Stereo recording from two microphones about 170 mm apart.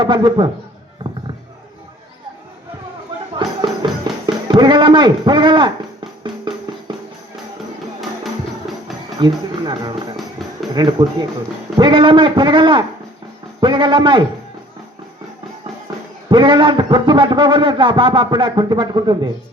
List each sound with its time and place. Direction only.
0.0 s speech: 25° right (ahead or behind)
3.3 s music: 25° right (ahead or behind)
9.1 s speech: 25° right (ahead or behind)
16.3 s speech: 30° right (ahead or behind)